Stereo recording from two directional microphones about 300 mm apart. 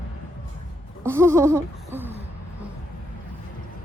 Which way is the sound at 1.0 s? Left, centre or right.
Centre.